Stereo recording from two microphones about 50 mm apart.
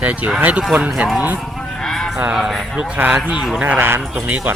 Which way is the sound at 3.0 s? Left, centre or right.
Right.